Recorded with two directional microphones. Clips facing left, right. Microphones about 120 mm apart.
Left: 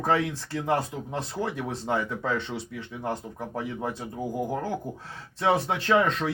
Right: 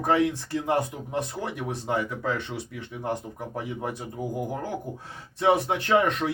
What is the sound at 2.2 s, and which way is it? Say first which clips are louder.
Speech: even; 20° left (ahead or behind).